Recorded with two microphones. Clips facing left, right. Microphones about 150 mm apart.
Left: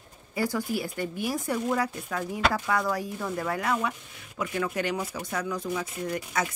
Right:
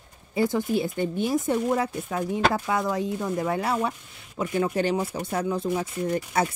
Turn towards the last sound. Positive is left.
turn(degrees=-30)  # may be behind; listen again after turning